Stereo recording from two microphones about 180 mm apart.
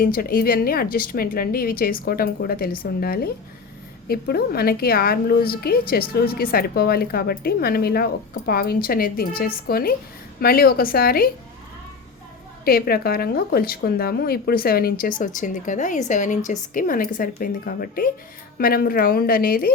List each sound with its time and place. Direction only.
0.0 s a woman's voice: 55° left (ahead or behind)
12.6 s a woman's voice: 55° left (ahead or behind)